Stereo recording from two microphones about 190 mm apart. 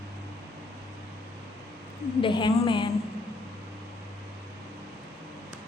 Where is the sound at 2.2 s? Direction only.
25° left (ahead or behind).